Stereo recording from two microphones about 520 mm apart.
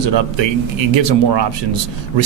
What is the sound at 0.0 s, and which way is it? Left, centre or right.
Speech, right.